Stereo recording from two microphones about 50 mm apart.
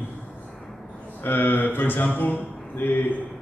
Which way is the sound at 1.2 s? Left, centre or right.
Left.